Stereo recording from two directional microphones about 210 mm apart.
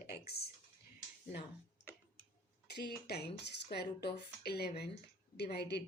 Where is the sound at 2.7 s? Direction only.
50° left (ahead or behind).